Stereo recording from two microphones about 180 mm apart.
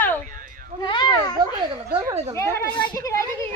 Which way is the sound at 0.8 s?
25° left (ahead or behind).